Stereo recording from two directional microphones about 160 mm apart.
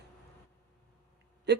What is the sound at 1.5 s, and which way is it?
Speech, 90° right.